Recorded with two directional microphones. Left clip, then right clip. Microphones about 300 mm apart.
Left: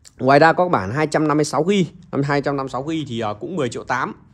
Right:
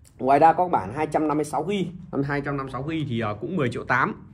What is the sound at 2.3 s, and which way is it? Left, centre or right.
Speech, centre.